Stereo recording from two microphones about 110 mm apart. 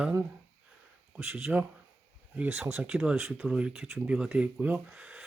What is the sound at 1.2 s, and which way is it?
Speech, 20° right (ahead or behind).